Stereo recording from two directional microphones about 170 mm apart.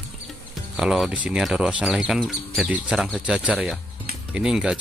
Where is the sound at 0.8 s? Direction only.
5° right (ahead or behind).